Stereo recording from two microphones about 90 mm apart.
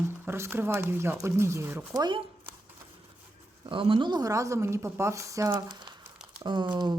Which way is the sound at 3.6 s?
70° right (ahead or behind).